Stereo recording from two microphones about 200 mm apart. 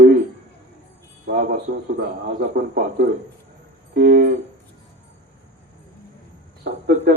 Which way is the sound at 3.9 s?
55° right (ahead or behind).